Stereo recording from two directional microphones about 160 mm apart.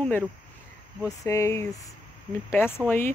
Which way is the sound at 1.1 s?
20° left (ahead or behind).